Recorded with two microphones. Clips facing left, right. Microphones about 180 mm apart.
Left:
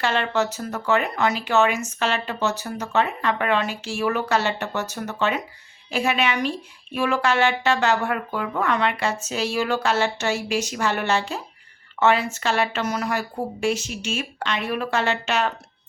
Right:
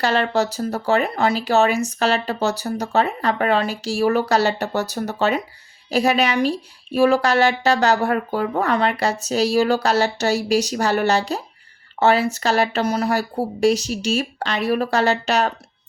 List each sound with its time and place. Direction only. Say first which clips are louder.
0.0 s speech: right 3 dB; 40° right (ahead or behind)